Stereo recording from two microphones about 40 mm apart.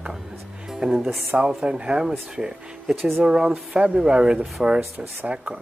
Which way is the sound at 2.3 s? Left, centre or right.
Centre.